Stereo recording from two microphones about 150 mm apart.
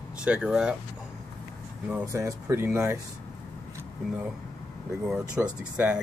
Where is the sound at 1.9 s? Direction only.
15° right (ahead or behind).